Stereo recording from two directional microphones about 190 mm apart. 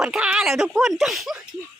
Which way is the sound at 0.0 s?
5° right (ahead or behind).